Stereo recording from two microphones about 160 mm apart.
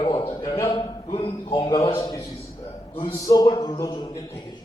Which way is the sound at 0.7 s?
35° left (ahead or behind).